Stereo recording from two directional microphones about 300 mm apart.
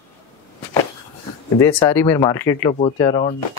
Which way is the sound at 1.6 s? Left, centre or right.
Centre.